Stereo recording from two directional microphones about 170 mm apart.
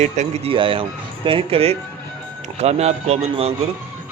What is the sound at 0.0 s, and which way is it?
Speech, 45° right (ahead or behind).